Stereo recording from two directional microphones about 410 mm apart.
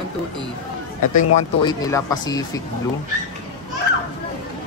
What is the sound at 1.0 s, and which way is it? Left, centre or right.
Speech, left.